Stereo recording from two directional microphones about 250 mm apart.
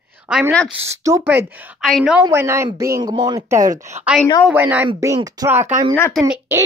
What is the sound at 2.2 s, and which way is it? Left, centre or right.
A woman's voice, centre.